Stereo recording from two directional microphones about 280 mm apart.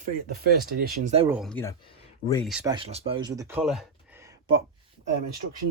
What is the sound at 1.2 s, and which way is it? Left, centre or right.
Speech, centre.